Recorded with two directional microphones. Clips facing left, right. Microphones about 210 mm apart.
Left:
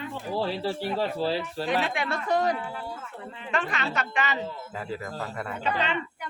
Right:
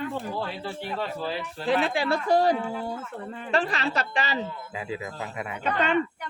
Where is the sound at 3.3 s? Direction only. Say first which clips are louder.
Right 4 dB; 45° right (ahead or behind).